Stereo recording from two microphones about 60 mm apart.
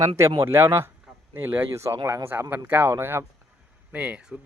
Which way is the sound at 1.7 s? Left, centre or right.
Right.